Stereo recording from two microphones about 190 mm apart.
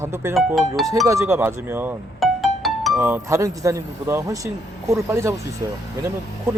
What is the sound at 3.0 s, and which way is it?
A man's voice, 15° right (ahead or behind).